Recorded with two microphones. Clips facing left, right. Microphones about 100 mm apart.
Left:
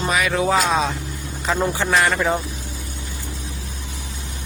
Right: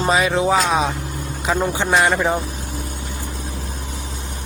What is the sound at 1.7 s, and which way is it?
Speech, 20° right (ahead or behind).